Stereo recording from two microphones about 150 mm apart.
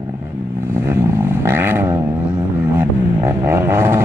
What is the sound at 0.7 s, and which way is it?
Vehicle, 15° right (ahead or behind).